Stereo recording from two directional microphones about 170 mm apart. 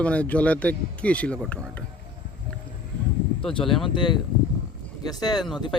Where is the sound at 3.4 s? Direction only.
30° left (ahead or behind).